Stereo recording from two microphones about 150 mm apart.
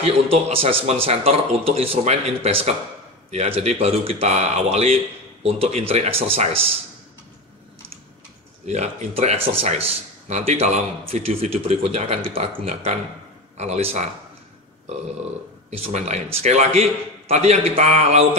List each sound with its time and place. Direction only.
0.0 s speech: 40° right (ahead or behind)
8.6 s speech: 50° right (ahead or behind)
15.8 s speech: 45° right (ahead or behind)